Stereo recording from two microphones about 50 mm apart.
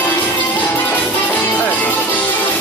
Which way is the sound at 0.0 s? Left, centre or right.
Left.